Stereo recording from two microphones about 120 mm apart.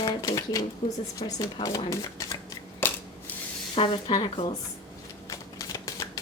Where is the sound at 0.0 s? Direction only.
35° left (ahead or behind).